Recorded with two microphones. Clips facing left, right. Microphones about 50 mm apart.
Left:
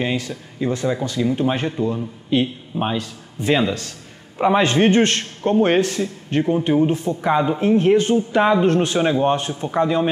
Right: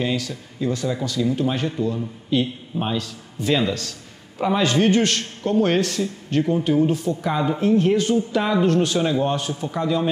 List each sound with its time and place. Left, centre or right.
0.0 s a man's voice: left